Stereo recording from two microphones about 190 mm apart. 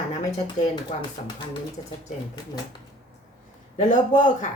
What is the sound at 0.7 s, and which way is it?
Speech, 25° left (ahead or behind).